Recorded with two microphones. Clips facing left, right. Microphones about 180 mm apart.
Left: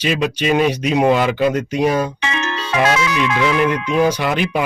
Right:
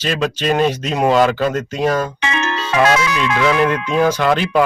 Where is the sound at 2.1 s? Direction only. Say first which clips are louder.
Right 2 dB; 55° right (ahead or behind).